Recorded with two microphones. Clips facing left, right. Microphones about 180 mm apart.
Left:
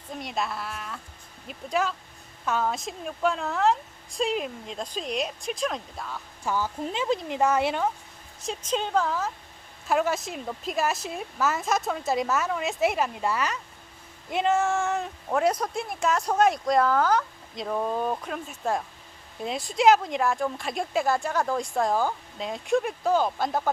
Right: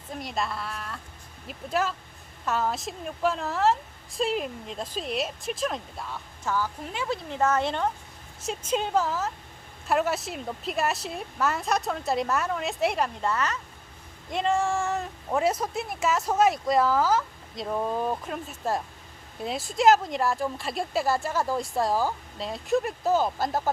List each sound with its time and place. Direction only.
0.1 s speech: centre (ahead or behind)
6.4 s a woman's voice: 20° left (ahead or behind)
8.4 s speech: 5° right (ahead or behind)